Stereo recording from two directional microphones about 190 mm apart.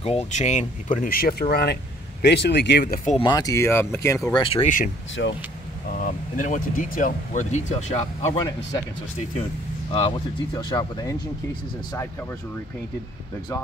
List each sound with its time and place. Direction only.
0.0 s speech: 35° left (ahead or behind); by 2.8 s 65° left (ahead or behind)
2.8 s speech: 45° left (ahead or behind)
3.2 s speech: 20° left (ahead or behind)
4.5 s speech: 30° left (ahead or behind)
5.2 s speech: 70° left (ahead or behind)
5.9 s speech: 45° left (ahead or behind)
9.9 s speech: 25° left (ahead or behind)